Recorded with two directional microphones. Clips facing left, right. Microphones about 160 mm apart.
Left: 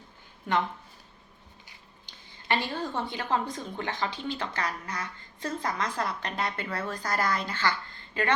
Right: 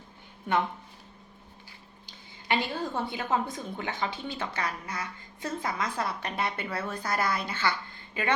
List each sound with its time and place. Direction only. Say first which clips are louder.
2.5 s a woman's voice: even; 10° right (ahead or behind)